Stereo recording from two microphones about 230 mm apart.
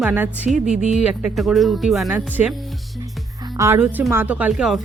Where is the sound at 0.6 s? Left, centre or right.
Right.